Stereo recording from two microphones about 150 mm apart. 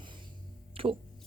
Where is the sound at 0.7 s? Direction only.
35° right (ahead or behind).